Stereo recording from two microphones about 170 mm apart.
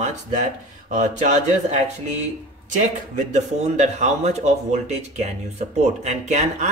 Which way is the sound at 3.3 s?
45° right (ahead or behind).